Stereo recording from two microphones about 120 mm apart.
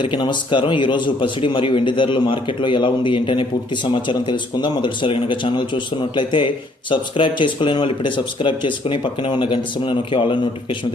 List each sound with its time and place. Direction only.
0.0 s a man's voice: 40° left (ahead or behind)